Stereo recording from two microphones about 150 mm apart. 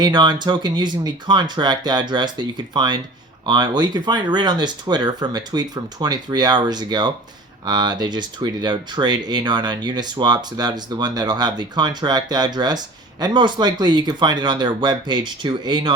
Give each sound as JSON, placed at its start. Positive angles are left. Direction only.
{"t": 0.0, "sound": "speech", "side_deg": -30}